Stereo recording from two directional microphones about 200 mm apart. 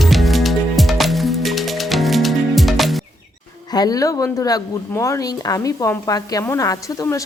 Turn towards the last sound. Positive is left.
turn(degrees=15)  # may be behind; listen again after turning